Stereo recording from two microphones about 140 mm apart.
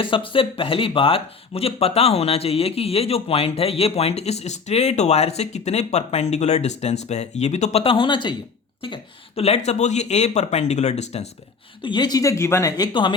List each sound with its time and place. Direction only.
0.0 s speech: 40° left (ahead or behind)
11.8 s speech: 35° left (ahead or behind)